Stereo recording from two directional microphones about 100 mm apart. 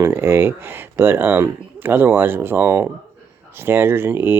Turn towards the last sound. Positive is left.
turn(degrees=-20)  # may be behind; listen again after turning